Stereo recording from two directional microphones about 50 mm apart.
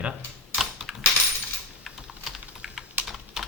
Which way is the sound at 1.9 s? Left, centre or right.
Centre.